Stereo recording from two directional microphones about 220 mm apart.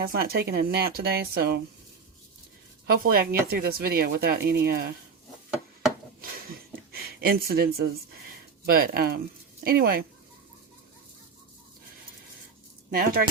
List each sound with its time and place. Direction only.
0.0 s speech: 45° right (ahead or behind)
2.8 s speech: 45° right (ahead or behind)
6.2 s a sound: 45° right (ahead or behind)
8.6 s speech: 45° right (ahead or behind)
12.9 s speech: 45° right (ahead or behind)